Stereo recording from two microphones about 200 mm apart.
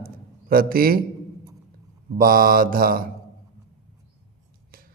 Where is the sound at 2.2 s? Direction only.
45° right (ahead or behind).